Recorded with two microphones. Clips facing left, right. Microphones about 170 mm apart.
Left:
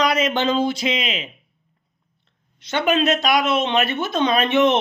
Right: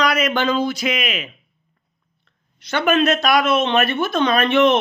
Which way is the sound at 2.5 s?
20° left (ahead or behind).